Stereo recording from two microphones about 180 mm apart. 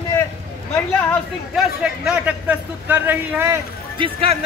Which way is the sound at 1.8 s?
5° right (ahead or behind).